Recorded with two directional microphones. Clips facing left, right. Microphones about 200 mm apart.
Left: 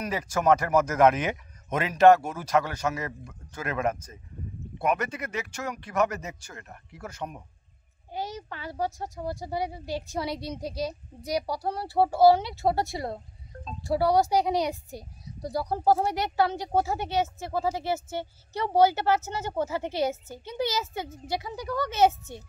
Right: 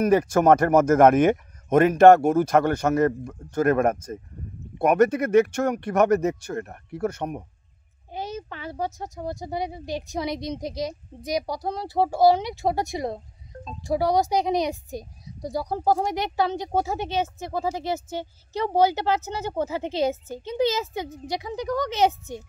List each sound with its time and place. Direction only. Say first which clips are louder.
0.0 s speech: right 8 dB; 50° right (ahead or behind)
8.1 s a child's voice: right 2 dB; 20° right (ahead or behind)